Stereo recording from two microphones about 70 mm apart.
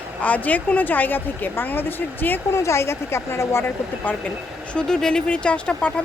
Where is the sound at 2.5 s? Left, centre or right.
Left.